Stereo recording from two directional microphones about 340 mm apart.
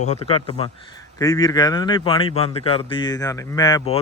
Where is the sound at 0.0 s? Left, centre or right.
Centre.